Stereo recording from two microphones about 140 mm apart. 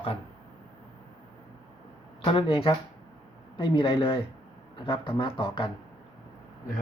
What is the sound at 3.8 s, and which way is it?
Speech, 40° left (ahead or behind).